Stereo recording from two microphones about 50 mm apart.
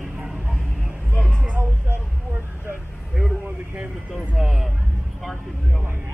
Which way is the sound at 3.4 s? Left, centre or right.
Right.